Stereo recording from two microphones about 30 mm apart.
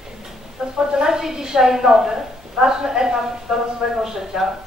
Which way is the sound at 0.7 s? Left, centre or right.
Right.